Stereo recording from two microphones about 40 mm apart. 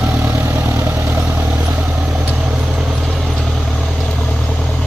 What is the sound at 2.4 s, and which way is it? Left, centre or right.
Vehicle, centre.